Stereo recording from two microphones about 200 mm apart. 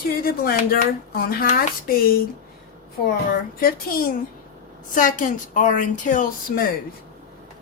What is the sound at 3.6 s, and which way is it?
A woman's voice, 50° left (ahead or behind).